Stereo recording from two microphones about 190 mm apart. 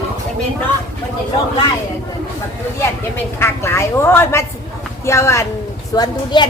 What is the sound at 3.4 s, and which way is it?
A woman's voice, 15° left (ahead or behind).